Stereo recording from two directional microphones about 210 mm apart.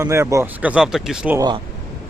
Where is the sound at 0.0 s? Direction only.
15° right (ahead or behind).